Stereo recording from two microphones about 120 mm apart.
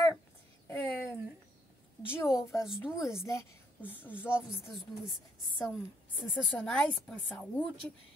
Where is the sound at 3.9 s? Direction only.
15° left (ahead or behind).